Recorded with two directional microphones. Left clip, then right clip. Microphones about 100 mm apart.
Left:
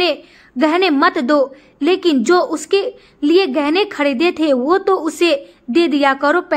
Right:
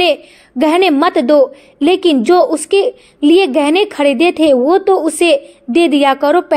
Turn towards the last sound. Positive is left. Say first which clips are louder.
# right 3 dB
turn(degrees=-25)  # may be behind; listen again after turning